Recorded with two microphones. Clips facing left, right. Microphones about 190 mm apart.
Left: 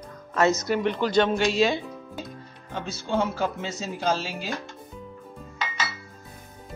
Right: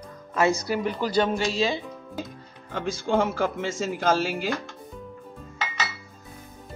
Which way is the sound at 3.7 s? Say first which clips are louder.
Right 3 dB; 50° right (ahead or behind).